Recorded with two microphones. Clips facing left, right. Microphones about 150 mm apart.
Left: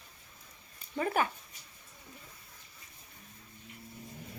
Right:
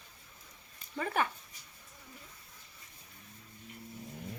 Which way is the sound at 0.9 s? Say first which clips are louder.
Left 2 dB; 10° left (ahead or behind).